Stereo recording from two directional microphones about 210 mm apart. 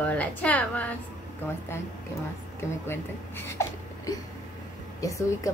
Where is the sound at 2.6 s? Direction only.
10° left (ahead or behind).